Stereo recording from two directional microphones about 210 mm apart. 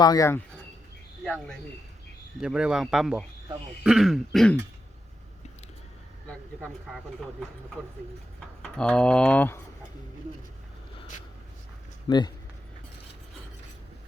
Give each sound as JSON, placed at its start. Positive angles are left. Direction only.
{"t": 0.0, "sound": "speech", "side_deg": 15}
{"t": 6.6, "sound": "speech", "side_deg": 0}
{"t": 8.6, "sound": "speech", "side_deg": 5}
{"t": 12.0, "sound": "speech", "side_deg": 20}